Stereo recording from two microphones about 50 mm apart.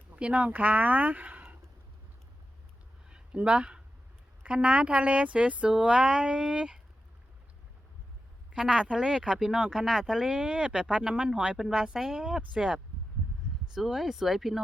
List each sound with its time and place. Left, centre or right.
0.2 s speech: right
0.4 s speech: right
3.1 s a sound: right
4.4 s speech: right
8.5 s speech: centre